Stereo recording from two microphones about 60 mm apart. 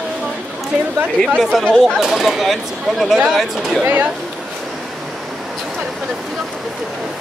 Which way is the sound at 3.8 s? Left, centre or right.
Right.